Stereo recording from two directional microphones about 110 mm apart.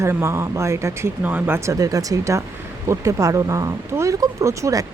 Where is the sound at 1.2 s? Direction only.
15° right (ahead or behind).